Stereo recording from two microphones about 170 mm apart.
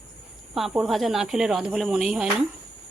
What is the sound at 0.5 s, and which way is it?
Speech, centre (ahead or behind).